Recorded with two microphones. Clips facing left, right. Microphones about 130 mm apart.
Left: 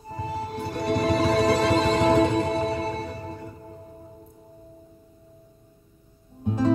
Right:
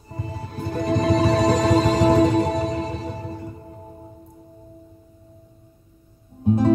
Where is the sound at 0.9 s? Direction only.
40° right (ahead or behind).